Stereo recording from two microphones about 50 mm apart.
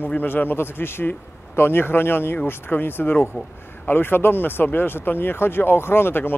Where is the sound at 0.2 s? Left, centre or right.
Left.